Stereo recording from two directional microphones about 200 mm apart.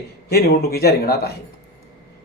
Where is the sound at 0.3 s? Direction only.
50° left (ahead or behind).